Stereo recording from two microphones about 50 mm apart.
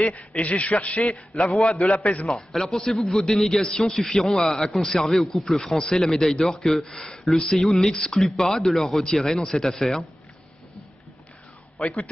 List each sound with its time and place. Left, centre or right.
0.4 s a man's voice: left
1.0 s a man's voice: centre
11.8 s speech: centre